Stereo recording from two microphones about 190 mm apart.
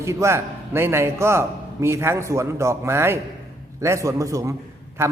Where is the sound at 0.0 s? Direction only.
15° right (ahead or behind).